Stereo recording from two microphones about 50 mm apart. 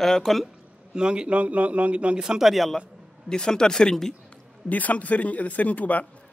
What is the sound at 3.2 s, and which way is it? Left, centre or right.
Speech, centre.